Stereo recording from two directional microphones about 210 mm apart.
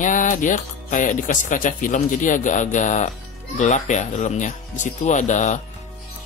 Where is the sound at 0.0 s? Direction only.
40° left (ahead or behind).